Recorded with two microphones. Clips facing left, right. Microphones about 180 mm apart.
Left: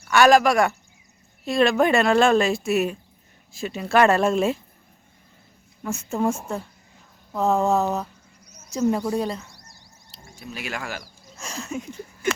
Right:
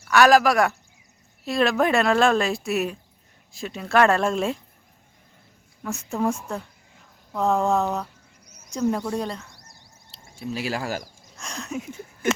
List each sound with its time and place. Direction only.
0.1 s speech: centre (ahead or behind)
5.8 s speech: centre (ahead or behind)
9.6 s a sound: 25° right (ahead or behind)
11.3 s speech: 5° left (ahead or behind)